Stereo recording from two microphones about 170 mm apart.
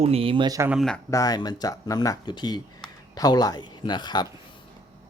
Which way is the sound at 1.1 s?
20° left (ahead or behind).